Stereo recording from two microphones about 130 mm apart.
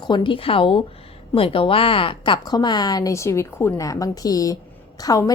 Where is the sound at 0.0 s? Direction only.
35° left (ahead or behind).